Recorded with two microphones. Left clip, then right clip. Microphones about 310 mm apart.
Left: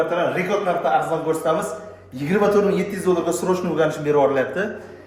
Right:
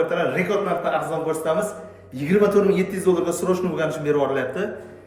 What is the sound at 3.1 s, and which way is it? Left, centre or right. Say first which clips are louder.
A man's voice: left 1 dB; centre.